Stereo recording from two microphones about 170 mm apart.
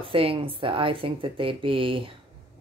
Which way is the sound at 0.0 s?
30° right (ahead or behind).